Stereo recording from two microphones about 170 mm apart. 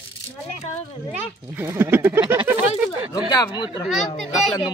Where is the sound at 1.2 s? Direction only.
10° right (ahead or behind).